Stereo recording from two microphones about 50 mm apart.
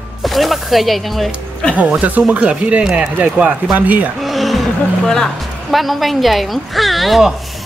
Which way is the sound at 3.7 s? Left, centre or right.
Right.